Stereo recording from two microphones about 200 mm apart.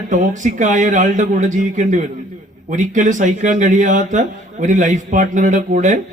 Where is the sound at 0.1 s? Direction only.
40° right (ahead or behind).